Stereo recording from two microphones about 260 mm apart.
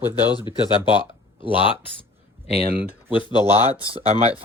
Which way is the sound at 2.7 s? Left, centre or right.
Centre.